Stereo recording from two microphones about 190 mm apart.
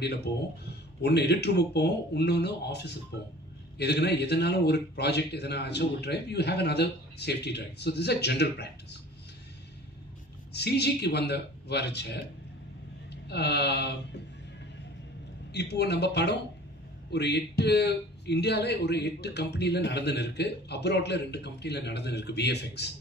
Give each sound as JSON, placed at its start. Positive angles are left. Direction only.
{"t": 0.0, "sound": "a man's voice", "side_deg": 60}
{"t": 10.5, "sound": "a man's voice", "side_deg": 60}
{"t": 13.3, "sound": "a man's voice", "side_deg": 60}
{"t": 15.5, "sound": "a man's voice", "side_deg": 60}